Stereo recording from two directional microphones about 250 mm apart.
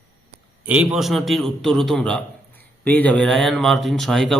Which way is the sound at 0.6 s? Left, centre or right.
Centre.